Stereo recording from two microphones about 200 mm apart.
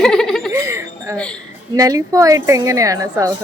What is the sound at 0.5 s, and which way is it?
A woman's voice, 15° right (ahead or behind).